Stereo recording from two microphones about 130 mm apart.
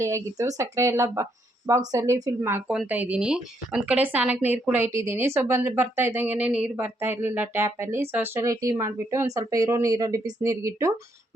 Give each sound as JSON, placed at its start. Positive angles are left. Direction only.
{"t": 0.0, "sound": "a woman's voice", "side_deg": -25}